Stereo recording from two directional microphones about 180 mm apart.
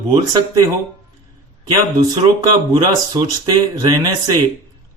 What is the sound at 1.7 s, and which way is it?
Speech, 25° right (ahead or behind).